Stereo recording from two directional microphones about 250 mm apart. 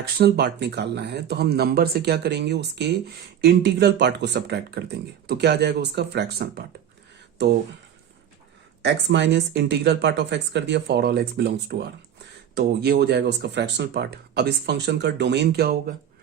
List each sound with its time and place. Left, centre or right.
0.2 s speech: right
8.8 s speech: right